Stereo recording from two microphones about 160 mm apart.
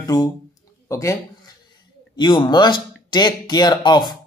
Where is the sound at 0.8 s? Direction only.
20° left (ahead or behind).